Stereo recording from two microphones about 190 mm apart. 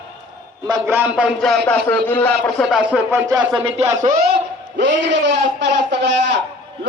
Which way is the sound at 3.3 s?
5° right (ahead or behind).